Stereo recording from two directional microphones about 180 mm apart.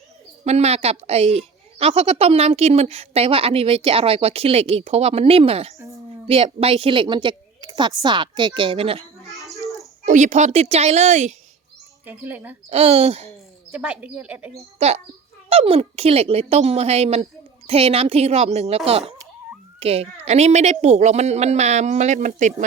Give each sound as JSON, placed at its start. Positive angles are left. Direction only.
{"t": 0.4, "sound": "a woman's voice", "side_deg": -35}
{"t": 9.3, "sound": "bathtub", "side_deg": 0}
{"t": 10.1, "sound": "speech", "side_deg": -40}
{"t": 12.0, "sound": "speech", "side_deg": -10}
{"t": 12.7, "sound": "speech", "side_deg": -35}
{"t": 13.7, "sound": "speech", "side_deg": -5}
{"t": 14.8, "sound": "speech", "side_deg": -35}